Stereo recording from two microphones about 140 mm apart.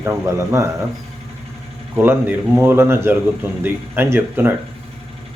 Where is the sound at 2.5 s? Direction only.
15° right (ahead or behind).